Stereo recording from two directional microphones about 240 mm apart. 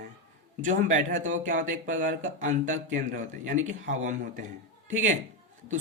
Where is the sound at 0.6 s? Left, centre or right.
Right.